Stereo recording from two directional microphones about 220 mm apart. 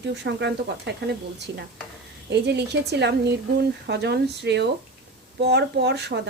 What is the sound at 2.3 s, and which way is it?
A woman's voice, 50° right (ahead or behind).